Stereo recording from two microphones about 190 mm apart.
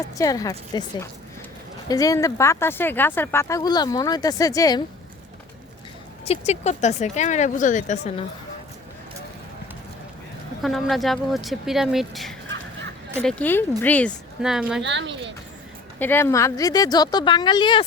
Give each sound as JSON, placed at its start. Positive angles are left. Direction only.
{"t": 0.2, "sound": "a woman's voice", "side_deg": 20}
{"t": 6.2, "sound": "speech", "side_deg": 35}
{"t": 10.6, "sound": "speech", "side_deg": 0}
{"t": 13.2, "sound": "speech", "side_deg": 10}
{"t": 14.4, "sound": "speech", "side_deg": -5}
{"t": 14.8, "sound": "speech", "side_deg": -70}
{"t": 16.0, "sound": "a woman's voice", "side_deg": 10}